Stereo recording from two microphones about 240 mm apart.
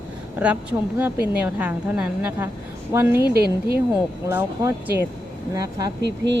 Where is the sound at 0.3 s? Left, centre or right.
Centre.